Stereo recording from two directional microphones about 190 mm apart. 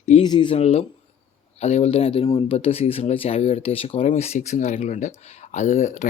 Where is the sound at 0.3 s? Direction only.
25° left (ahead or behind).